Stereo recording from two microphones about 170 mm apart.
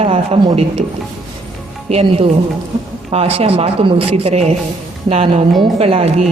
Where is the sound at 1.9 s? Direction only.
35° right (ahead or behind).